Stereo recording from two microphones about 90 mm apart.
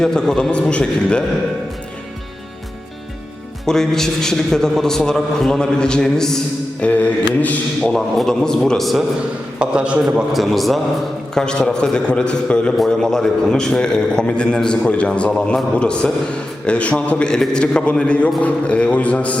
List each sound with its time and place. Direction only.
0.0 s a man's voice: 5° left (ahead or behind)
3.7 s a man's voice: 5° left (ahead or behind)
6.8 s a man's voice: 15° left (ahead or behind)
7.8 s a man's voice: 5° left (ahead or behind)
9.6 s a man's voice: 10° right (ahead or behind)
10.3 s a man's voice: centre (ahead or behind)